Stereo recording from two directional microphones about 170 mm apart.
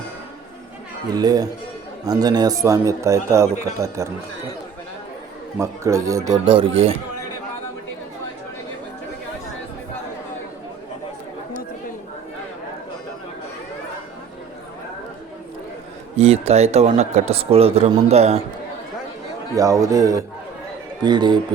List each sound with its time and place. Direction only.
1.1 s a man's voice: 20° right (ahead or behind)
5.5 s a man's voice: 15° right (ahead or behind); by 6.9 s 35° right (ahead or behind)
16.1 s a man's voice: 40° right (ahead or behind)
19.5 s a man's voice: 20° right (ahead or behind)